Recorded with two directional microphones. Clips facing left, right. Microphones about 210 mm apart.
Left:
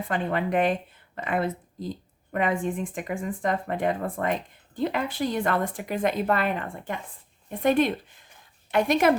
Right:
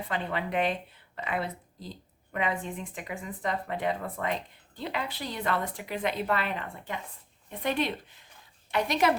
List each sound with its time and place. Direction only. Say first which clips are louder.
0.1 s speech: left 6 dB; 50° left (ahead or behind)